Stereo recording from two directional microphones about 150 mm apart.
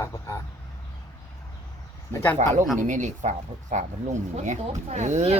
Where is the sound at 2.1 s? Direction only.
15° left (ahead or behind).